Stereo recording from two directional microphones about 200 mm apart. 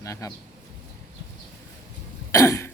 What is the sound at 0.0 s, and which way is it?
Speech, 15° left (ahead or behind).